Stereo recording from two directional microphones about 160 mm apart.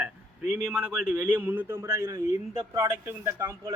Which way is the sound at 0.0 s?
10° right (ahead or behind).